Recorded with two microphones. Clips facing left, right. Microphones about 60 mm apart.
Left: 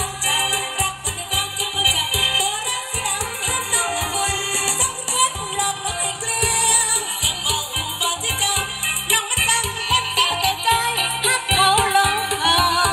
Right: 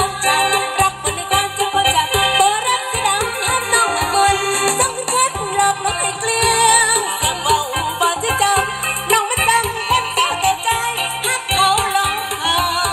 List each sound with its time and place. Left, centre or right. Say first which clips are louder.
0.0 s music: right 8 dB; right
6.4 s music: right 9 dB; right
10.6 s music: right 1 dB; centre